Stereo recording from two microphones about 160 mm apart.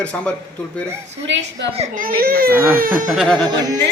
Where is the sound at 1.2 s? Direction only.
90° right.